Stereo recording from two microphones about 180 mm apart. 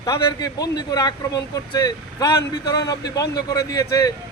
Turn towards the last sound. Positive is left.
turn(degrees=20)  # may be behind; listen again after turning